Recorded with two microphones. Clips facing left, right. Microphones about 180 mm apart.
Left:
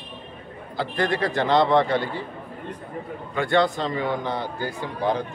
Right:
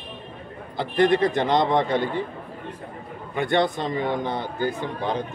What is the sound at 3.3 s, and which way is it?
A woman's voice, 20° right (ahead or behind).